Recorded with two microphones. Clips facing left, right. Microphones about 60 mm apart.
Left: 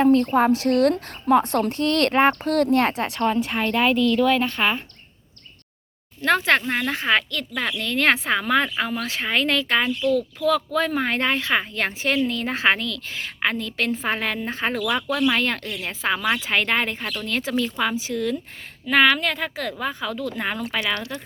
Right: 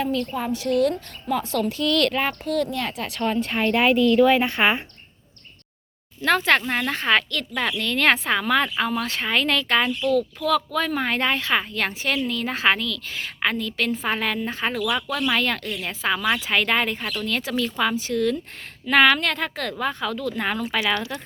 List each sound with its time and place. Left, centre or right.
0.0 s a woman's voice: left
1.4 s a woman's voice: left
2.4 s a woman's voice: left
3.2 s a woman's voice: centre
3.5 s a woman's voice: centre
6.2 s a woman's voice: centre
17.7 s a woman's voice: centre
18.9 s a woman's voice: centre